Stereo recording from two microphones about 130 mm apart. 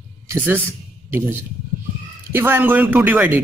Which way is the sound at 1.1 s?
15° right (ahead or behind).